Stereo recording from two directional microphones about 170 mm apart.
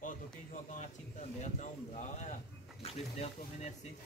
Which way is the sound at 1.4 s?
45° left (ahead or behind).